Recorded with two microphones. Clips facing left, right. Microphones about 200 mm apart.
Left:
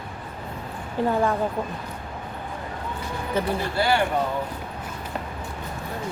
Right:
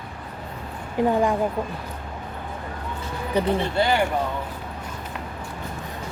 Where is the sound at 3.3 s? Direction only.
15° right (ahead or behind).